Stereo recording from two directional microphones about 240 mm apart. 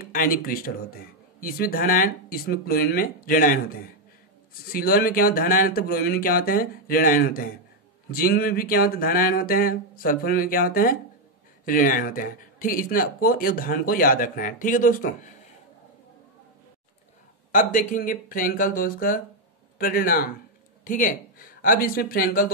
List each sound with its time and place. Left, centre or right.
0.0 s speech: left
4.7 s speech: left
17.5 s speech: left